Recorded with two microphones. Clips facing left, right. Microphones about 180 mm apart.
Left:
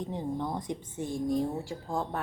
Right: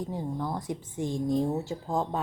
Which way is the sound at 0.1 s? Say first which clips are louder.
Even; centre (ahead or behind).